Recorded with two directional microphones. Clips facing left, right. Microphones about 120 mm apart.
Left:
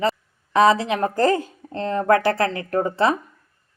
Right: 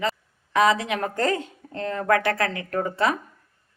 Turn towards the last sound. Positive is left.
turn(degrees=30)  # may be behind; listen again after turning